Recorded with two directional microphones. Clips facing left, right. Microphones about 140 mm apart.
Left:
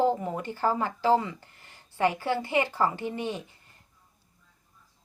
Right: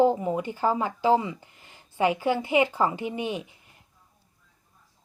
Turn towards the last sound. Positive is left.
turn(degrees=-15)  # may be behind; listen again after turning